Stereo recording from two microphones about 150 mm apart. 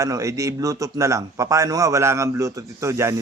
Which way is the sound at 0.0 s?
20° right (ahead or behind).